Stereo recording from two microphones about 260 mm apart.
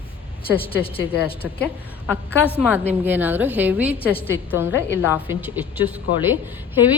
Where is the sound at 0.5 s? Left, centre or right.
Left.